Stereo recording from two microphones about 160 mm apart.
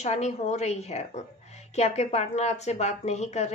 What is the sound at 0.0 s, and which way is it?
Speech, 45° left (ahead or behind).